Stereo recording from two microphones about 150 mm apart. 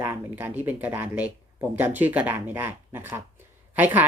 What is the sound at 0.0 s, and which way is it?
Speech, 15° right (ahead or behind).